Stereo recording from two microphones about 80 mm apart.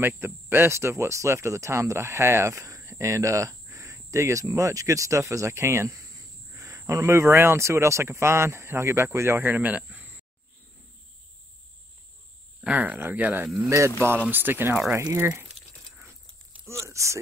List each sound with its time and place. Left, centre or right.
0.0 s speech: right
12.5 s speech: centre
13.7 s speech: right
14.3 s speech: right
16.6 s a sound: right